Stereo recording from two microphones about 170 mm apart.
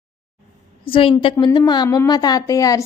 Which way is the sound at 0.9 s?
30° left (ahead or behind).